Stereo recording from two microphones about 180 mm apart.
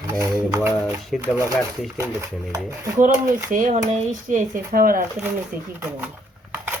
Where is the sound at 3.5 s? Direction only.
45° right (ahead or behind).